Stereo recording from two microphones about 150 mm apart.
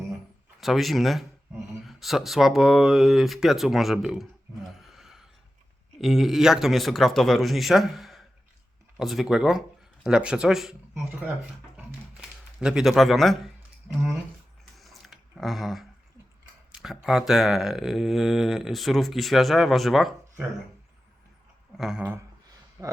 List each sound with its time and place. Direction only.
0.6 s speech: centre (ahead or behind)
12.5 s speech: 5° right (ahead or behind)
14.8 s a sound: centre (ahead or behind)
16.7 s speech: 5° right (ahead or behind)
21.8 s speech: 5° right (ahead or behind)
22.8 s speech: 20° right (ahead or behind)